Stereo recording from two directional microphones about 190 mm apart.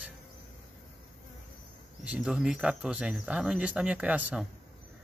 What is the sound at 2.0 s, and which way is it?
A man's voice, 5° right (ahead or behind).